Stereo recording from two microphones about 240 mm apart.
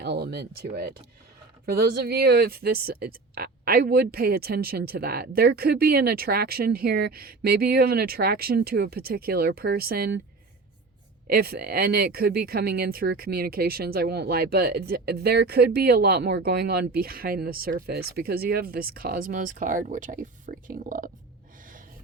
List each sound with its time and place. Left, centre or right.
0.0 s speech: right
11.3 s speech: right